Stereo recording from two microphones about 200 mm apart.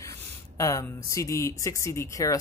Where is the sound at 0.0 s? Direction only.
15° left (ahead or behind).